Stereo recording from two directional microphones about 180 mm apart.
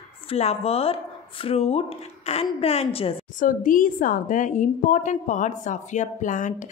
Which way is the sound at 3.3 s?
50° left (ahead or behind).